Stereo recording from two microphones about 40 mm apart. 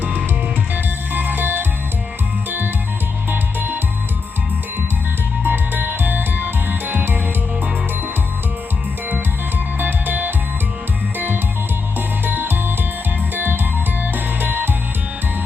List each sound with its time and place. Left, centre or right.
1.1 s music: right
3.2 s music: right
5.4 s music: right
9.7 s music: right
11.9 s music: right